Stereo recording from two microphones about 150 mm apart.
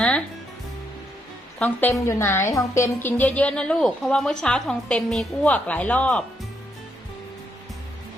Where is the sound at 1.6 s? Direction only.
10° left (ahead or behind).